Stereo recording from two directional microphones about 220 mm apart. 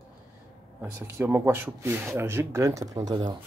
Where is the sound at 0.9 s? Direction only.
10° right (ahead or behind).